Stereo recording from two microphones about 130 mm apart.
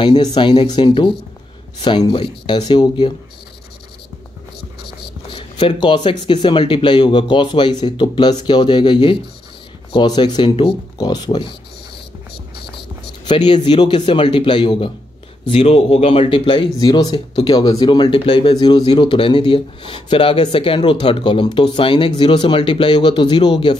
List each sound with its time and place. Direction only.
0.0 s speech: 35° left (ahead or behind)
5.0 s speech: 40° left (ahead or behind)
12.7 s speech: 35° left (ahead or behind)
15.4 s speech: 50° left (ahead or behind)